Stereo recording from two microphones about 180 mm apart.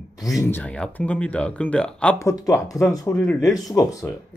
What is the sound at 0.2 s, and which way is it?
Speech, 20° left (ahead or behind).